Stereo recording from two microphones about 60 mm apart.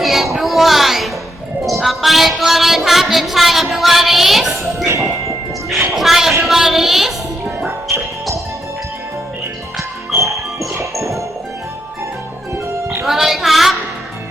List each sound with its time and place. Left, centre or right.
0.0 s a sound: centre
0.3 s music: centre
4.9 s a sound: right
5.9 s speech: centre
6.4 s music: centre
7.9 s music: right
13.1 s music: centre